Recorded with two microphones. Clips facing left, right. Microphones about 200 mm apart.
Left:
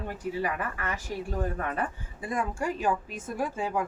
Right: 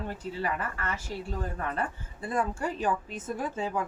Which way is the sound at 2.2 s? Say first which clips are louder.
Right 1 dB; 15° left (ahead or behind).